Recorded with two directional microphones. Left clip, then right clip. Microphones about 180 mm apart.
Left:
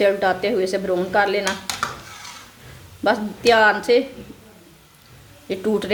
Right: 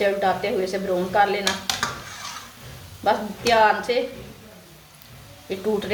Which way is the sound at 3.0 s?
60° left (ahead or behind).